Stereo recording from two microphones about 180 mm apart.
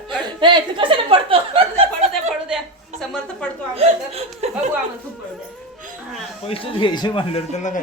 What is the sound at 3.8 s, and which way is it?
Chuckle, 35° right (ahead or behind).